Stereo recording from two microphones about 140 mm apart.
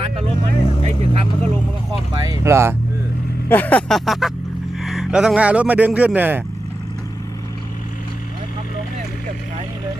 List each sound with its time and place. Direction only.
0.4 s speech: 50° right (ahead or behind)
2.2 s speech: 25° right (ahead or behind)
3.5 s speech: 10° left (ahead or behind); by 6.4 s 10° right (ahead or behind)